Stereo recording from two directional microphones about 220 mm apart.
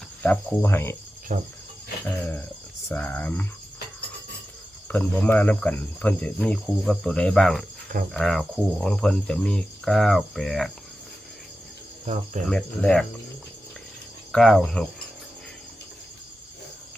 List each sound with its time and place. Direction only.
0.2 s speech: 10° left (ahead or behind)
1.3 s cricket: 35° right (ahead or behind)
2.9 s speech: 5° left (ahead or behind)
4.9 s speech: 5° left (ahead or behind)
12.0 s cricket: 35° right (ahead or behind)
12.5 s speech: 5° left (ahead or behind)
14.3 s speech: centre (ahead or behind)